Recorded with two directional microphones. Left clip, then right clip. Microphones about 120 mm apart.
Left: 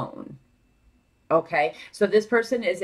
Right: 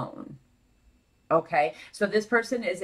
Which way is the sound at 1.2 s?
35° left (ahead or behind).